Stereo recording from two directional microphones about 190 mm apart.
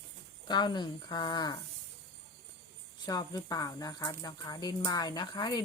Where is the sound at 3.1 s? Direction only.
20° left (ahead or behind).